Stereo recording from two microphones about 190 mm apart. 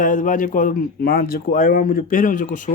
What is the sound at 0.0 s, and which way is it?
Speech, 45° left (ahead or behind).